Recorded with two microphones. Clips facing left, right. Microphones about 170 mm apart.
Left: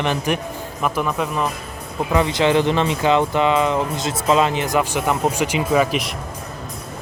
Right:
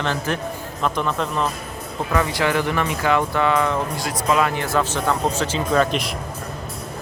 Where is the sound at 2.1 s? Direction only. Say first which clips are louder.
Left 4 dB; 20° left (ahead or behind); by 6.1 s 5° left (ahead or behind).